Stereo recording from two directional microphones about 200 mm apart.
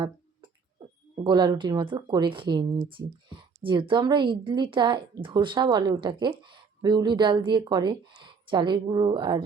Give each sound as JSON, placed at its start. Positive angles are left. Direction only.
{"t": 1.1, "sound": "speech", "side_deg": -20}